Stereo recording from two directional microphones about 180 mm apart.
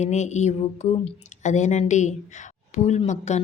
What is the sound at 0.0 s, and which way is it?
Speech, 40° left (ahead or behind).